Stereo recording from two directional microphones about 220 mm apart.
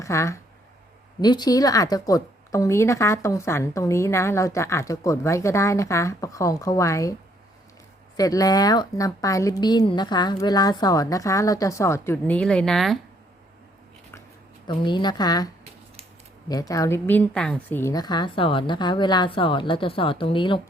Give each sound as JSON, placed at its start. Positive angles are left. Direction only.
{"t": 0.0, "sound": "a woman's voice", "side_deg": 15}
{"t": 14.7, "sound": "a woman's voice", "side_deg": 20}
{"t": 16.5, "sound": "a woman's voice", "side_deg": 15}